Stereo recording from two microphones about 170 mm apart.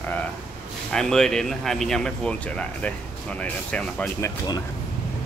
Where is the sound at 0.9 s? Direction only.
5° left (ahead or behind); by 4.6 s 20° left (ahead or behind).